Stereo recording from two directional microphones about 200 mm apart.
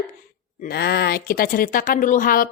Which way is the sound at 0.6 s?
55° left (ahead or behind).